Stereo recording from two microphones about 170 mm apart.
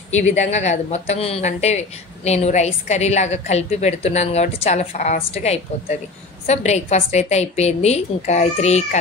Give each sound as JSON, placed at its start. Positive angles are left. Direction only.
{"t": 0.1, "sound": "a woman's voice", "side_deg": 40}